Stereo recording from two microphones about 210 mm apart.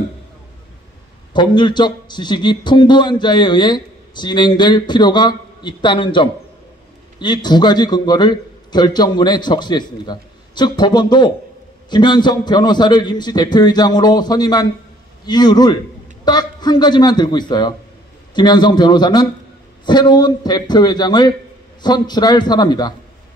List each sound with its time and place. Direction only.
1.3 s a man's voice: 20° left (ahead or behind)